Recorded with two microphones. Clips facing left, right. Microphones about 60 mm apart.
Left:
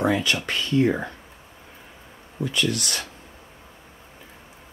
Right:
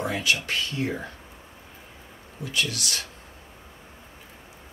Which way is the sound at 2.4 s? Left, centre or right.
Left.